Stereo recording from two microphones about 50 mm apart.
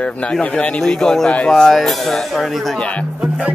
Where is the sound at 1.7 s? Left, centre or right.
Centre.